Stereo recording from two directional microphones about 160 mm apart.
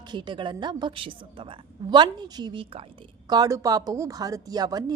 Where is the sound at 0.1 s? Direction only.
30° right (ahead or behind).